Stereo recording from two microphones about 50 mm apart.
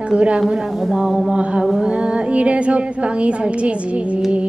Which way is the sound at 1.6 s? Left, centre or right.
Centre.